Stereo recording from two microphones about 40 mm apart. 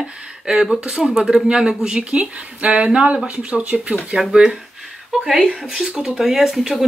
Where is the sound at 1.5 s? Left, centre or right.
Right.